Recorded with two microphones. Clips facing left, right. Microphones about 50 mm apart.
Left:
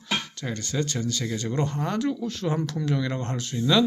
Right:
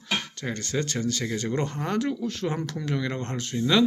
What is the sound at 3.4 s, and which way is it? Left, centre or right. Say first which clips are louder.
Speech: right 1 dB; right.